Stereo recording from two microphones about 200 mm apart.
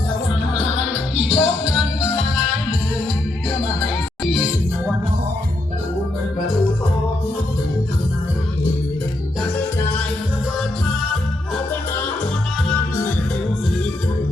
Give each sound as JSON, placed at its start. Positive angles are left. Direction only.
{"t": 0.5, "sound": "music", "side_deg": -30}
{"t": 1.3, "sound": "music", "side_deg": -5}